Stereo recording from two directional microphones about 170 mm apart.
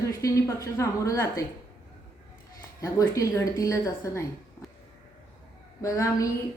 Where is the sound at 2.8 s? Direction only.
20° left (ahead or behind).